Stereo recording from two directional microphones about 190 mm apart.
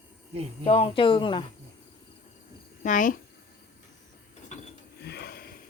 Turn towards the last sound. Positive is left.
turn(degrees=55)  # may be behind; listen again after turning